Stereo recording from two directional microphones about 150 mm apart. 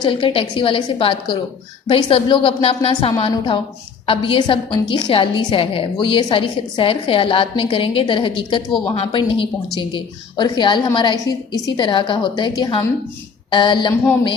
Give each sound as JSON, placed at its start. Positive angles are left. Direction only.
{"t": 0.1, "sound": "a woman's voice", "side_deg": 35}